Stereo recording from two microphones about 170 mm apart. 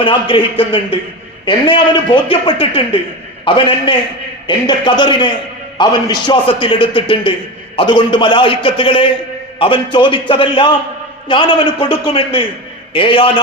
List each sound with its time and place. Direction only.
0.0 s a man's voice: 30° left (ahead or behind)